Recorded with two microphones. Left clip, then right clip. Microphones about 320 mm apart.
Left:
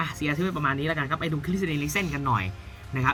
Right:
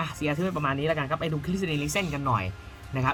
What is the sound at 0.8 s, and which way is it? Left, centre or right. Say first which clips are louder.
Speech: right 1 dB; right.